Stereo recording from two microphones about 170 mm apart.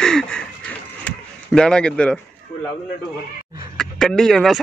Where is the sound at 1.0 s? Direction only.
5° left (ahead or behind).